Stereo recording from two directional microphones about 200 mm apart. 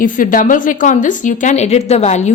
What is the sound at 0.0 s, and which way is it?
A woman's voice, 40° left (ahead or behind).